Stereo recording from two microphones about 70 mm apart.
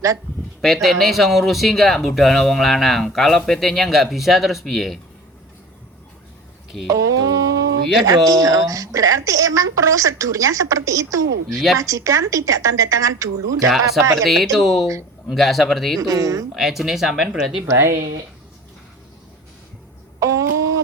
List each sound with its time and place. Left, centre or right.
0.6 s speech: centre
6.8 s speech: right
14.3 s speech: centre
16.0 s speech: right
16.6 s speech: centre
17.7 s speech: right
20.1 s a sound: right